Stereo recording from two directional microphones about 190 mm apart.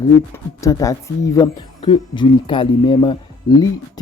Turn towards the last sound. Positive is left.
turn(degrees=20)  # may be behind; listen again after turning